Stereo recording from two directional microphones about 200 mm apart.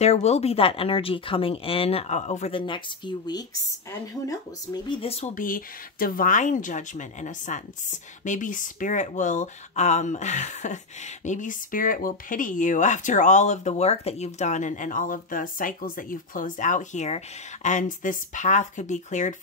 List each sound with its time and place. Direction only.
0.0 s speech: 35° left (ahead or behind)
4.8 s speech: 25° left (ahead or behind)